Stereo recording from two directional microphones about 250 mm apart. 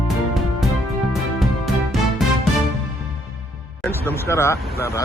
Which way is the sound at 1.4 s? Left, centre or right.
Centre.